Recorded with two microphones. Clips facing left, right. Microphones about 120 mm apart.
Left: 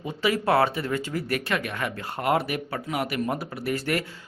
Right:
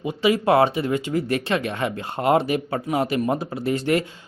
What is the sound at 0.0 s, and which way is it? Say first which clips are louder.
Speech: right 5 dB; 15° right (ahead or behind).